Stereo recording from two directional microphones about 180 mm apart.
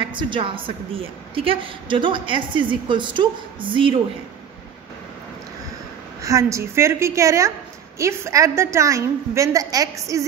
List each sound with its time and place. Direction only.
0.1 s a woman's voice: 25° right (ahead or behind)
6.2 s a woman's voice: 15° right (ahead or behind)